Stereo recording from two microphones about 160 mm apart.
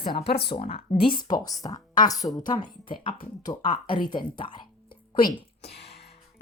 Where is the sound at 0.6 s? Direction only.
40° left (ahead or behind).